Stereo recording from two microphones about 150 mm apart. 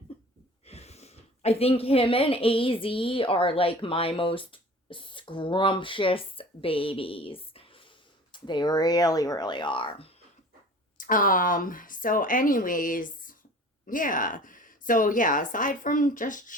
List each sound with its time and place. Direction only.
0.7 s speech: 45° left (ahead or behind)
11.0 s a woman's voice: 65° left (ahead or behind)